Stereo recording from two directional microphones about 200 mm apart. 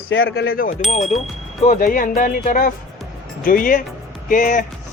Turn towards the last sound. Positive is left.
turn(degrees=40)  # may be behind; listen again after turning